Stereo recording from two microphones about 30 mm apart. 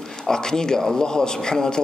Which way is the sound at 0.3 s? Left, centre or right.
Left.